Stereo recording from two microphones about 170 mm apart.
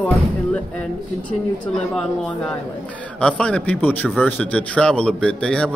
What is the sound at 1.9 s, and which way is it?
A man's voice, 5° left (ahead or behind).